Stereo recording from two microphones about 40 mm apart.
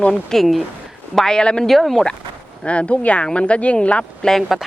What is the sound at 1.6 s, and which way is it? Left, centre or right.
Speech, centre.